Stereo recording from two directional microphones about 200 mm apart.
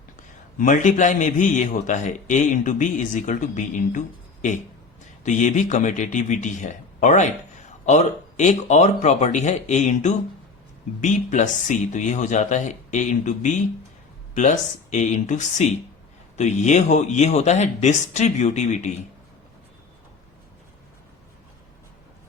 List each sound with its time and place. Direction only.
0.6 s a man's voice: 40° left (ahead or behind)
5.2 s a man's voice: 35° left (ahead or behind)